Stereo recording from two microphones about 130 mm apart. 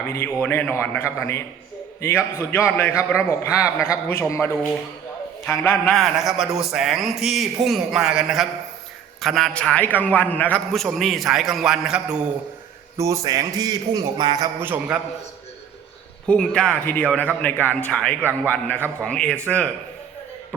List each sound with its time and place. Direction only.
0.0 s a man's voice: 20° left (ahead or behind)
5.9 s a man's voice: centre (ahead or behind)
10.7 s a man's voice: centre (ahead or behind)
13.0 s a man's voice: 25° right (ahead or behind)
14.6 s a man's voice: 10° right (ahead or behind)
16.2 s a man's voice: 10° left (ahead or behind)